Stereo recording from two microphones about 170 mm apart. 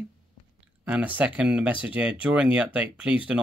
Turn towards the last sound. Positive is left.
turn(degrees=-5)  # may be behind; listen again after turning